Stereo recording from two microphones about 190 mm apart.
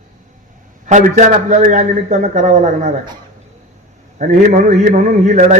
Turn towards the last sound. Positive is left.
turn(degrees=-40)  # may be behind; listen again after turning